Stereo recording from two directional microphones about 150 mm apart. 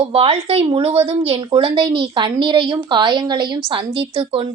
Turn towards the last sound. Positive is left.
turn(degrees=-35)  # may be behind; listen again after turning